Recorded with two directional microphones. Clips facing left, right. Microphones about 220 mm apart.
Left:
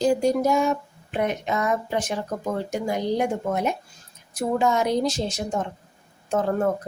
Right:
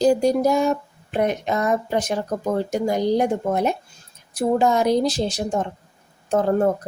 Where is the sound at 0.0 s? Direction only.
35° right (ahead or behind).